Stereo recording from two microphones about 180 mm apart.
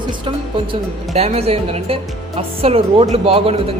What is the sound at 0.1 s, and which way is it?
Speech, 30° right (ahead or behind).